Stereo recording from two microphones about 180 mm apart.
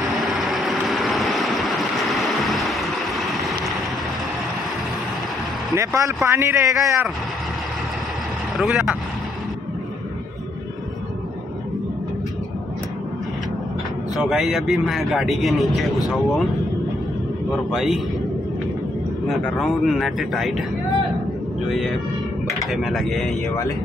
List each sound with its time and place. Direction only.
0.0 s vehicle: centre (ahead or behind)
5.8 s a man's voice: 15° right (ahead or behind)
8.5 s speech: 5° right (ahead or behind)
14.1 s speech: centre (ahead or behind)
17.5 s speech: centre (ahead or behind)
19.2 s speech: centre (ahead or behind)
21.6 s speech: centre (ahead or behind)